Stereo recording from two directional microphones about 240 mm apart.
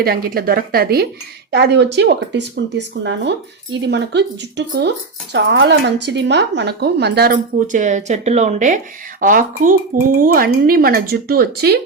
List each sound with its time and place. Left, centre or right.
0.0 s speech: right